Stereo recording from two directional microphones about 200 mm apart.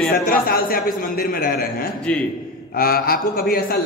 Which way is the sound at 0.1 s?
45° left (ahead or behind).